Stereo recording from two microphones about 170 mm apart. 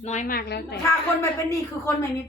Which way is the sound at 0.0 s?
45° left (ahead or behind).